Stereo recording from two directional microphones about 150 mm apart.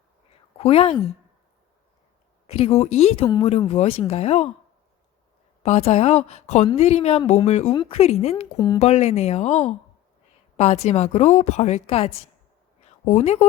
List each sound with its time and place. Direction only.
0.6 s a woman's voice: 40° left (ahead or behind)
2.5 s a woman's voice: 40° left (ahead or behind)
5.6 s a woman's voice: 45° left (ahead or behind)
7.7 s a woman's voice: 35° left (ahead or behind)
8.5 s speech: 25° left (ahead or behind)
8.8 s a woman's voice: 45° left (ahead or behind)